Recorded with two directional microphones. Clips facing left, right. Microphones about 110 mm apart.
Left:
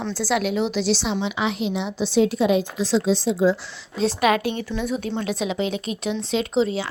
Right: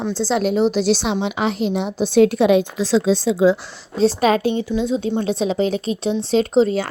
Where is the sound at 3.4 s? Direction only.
90° right.